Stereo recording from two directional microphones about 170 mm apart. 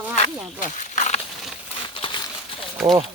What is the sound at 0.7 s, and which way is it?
Wild animals, 45° left (ahead or behind).